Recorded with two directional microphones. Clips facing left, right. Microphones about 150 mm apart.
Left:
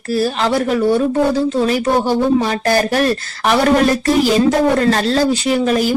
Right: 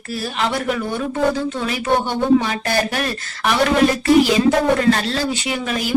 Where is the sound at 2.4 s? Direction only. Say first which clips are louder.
Left 4 dB; 40° left (ahead or behind).